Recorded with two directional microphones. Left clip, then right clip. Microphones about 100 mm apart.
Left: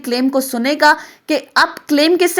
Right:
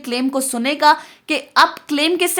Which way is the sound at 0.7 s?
40° left (ahead or behind).